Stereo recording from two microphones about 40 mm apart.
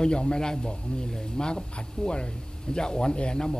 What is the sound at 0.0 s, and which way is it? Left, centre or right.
Speech, left.